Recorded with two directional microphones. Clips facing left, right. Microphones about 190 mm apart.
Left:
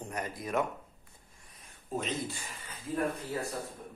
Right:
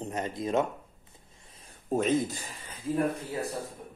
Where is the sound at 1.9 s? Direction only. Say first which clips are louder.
Right 9 dB; 45° right (ahead or behind).